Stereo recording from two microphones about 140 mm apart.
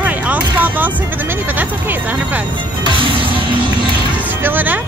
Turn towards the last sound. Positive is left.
turn(degrees=-15)  # may be behind; listen again after turning